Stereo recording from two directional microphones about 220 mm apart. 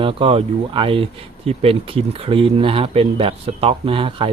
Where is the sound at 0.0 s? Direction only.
25° right (ahead or behind).